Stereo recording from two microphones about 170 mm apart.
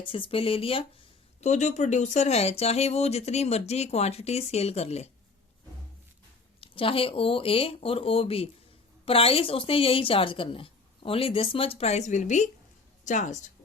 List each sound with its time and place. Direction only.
0.1 s speech: 30° left (ahead or behind)
1.4 s speech: 45° left (ahead or behind)
6.6 s speech: 30° left (ahead or behind)